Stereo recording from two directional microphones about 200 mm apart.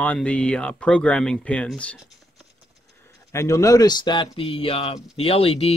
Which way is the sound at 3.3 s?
15° left (ahead or behind).